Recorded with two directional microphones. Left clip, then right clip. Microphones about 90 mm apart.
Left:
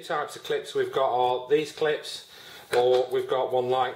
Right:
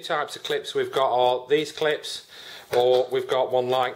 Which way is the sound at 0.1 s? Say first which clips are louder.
Right 2 dB; 30° right (ahead or behind).